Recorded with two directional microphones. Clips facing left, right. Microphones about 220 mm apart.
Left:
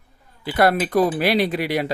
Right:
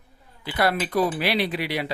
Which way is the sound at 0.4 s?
50° left (ahead or behind).